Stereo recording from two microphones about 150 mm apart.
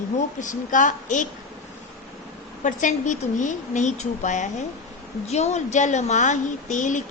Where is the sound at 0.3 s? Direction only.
55° left (ahead or behind).